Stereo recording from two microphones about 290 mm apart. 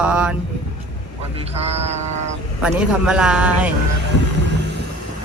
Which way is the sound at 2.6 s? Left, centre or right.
Centre.